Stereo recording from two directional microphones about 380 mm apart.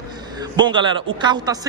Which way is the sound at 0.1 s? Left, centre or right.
Centre.